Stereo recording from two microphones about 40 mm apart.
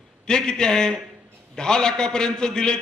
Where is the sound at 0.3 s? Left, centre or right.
Centre.